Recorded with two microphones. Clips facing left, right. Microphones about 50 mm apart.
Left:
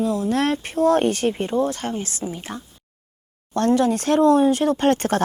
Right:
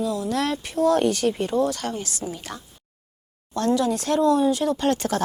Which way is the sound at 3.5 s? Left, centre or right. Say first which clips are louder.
Left 3 dB; left.